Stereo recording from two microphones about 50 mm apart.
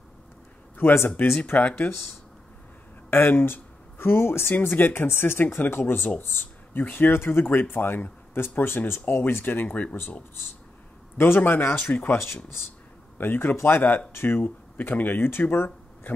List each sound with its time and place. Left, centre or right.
0.8 s speech: left
1.4 s speech: left
3.1 s speech: left
7.1 s speech: left
9.7 s speech: left
11.1 s speech: left
13.2 s speech: left